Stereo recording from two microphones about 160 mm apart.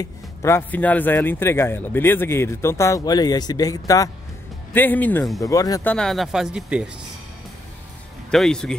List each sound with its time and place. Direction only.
0.0 s speech: 20° left (ahead or behind)
4.7 s speech: 10° left (ahead or behind)
5.4 s speech: 20° left (ahead or behind)
5.9 s speech: 5° left (ahead or behind)
8.3 s speech: 5° left (ahead or behind)